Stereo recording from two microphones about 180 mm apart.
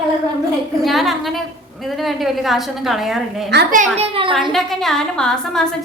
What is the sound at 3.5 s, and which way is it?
Speech, 65° right (ahead or behind).